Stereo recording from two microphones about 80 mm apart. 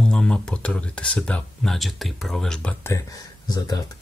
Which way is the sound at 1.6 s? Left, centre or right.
Centre.